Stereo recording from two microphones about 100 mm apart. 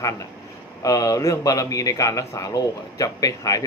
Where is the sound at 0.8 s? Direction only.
35° left (ahead or behind).